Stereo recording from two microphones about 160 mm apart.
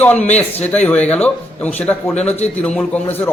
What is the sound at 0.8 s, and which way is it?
A man's voice, 5° left (ahead or behind).